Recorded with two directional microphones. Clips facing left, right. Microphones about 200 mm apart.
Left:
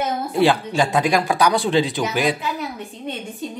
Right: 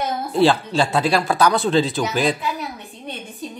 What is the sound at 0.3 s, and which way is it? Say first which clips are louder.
Speech: right 2 dB; 15° left (ahead or behind).